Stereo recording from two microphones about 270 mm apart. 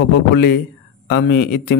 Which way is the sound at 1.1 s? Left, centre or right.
Left.